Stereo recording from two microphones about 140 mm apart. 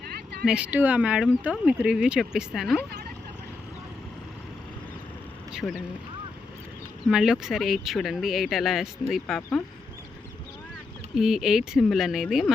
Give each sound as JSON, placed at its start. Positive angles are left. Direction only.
{"t": 0.4, "sound": "speech", "side_deg": -5}
{"t": 5.6, "sound": "speech", "side_deg": 25}
{"t": 7.1, "sound": "speech", "side_deg": -5}
{"t": 11.1, "sound": "speech", "side_deg": -5}